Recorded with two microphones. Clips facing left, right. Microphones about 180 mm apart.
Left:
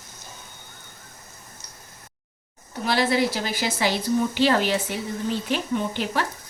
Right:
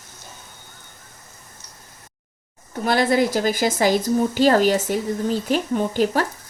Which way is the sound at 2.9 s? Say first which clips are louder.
Right 4 dB; 50° right (ahead or behind).